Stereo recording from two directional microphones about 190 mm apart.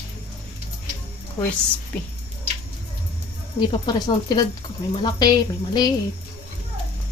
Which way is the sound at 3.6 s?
20° left (ahead or behind).